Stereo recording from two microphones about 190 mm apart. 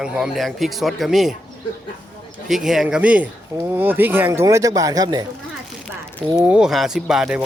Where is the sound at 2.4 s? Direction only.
Centre (ahead or behind); by 5.3 s 20° right (ahead or behind).